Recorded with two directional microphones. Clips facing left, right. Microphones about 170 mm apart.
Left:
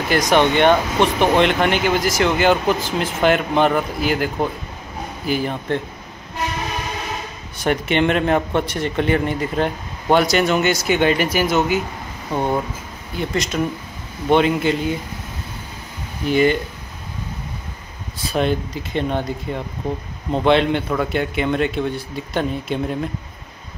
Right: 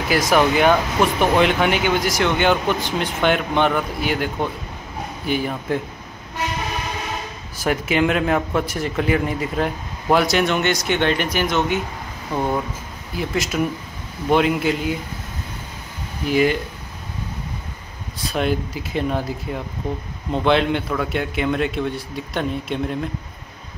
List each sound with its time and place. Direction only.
0.1 s a man's voice: centre (ahead or behind)
7.5 s a man's voice: 5° right (ahead or behind)
16.3 s a man's voice: centre (ahead or behind)
18.2 s a man's voice: centre (ahead or behind)